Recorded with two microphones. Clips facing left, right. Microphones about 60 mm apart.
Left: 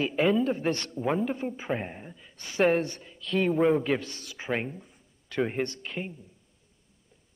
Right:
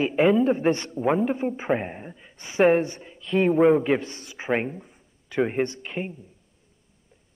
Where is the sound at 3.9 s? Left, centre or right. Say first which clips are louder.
Right 5 dB; right.